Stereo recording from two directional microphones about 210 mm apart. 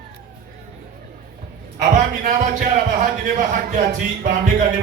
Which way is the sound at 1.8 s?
35° right (ahead or behind).